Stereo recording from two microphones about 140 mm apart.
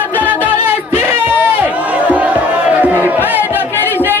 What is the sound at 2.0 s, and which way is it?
Music, 10° right (ahead or behind).